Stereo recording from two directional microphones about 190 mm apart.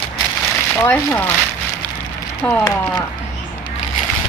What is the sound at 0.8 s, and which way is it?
Speech, 10° left (ahead or behind).